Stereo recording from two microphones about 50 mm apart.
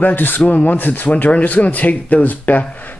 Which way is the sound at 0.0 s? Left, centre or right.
Left.